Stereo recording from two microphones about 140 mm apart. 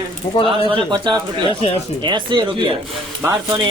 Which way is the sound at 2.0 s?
35° right (ahead or behind).